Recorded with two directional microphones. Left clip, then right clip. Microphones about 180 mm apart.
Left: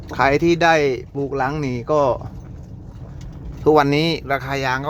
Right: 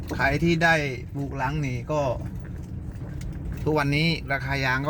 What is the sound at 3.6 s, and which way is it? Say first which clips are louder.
Speech: left 9 dB; 30° left (ahead or behind).